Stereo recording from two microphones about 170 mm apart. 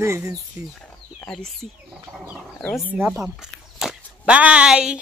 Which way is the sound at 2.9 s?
10° right (ahead or behind).